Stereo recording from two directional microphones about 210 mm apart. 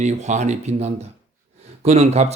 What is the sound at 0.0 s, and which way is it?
A man's voice, 35° right (ahead or behind).